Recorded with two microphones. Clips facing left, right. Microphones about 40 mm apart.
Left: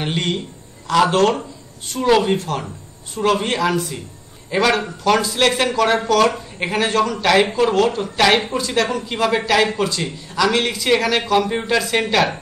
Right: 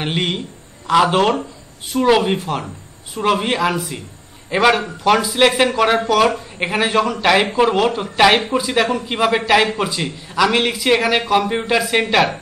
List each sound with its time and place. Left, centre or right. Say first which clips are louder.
0.0 s a man's voice: right 1 dB; centre